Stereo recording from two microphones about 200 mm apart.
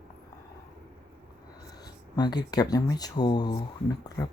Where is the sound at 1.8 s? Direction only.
20° left (ahead or behind).